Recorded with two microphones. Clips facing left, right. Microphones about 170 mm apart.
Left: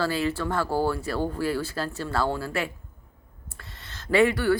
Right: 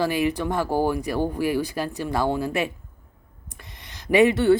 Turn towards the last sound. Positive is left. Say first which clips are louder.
# right 4 dB
turn(degrees=-25)  # may be behind; listen again after turning